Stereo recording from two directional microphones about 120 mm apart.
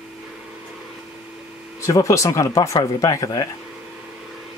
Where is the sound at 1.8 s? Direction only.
25° left (ahead or behind).